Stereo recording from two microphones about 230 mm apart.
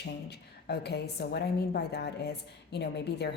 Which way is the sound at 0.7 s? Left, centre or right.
Left.